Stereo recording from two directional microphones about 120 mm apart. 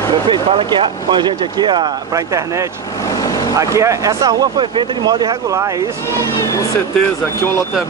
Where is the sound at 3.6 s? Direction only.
25° right (ahead or behind).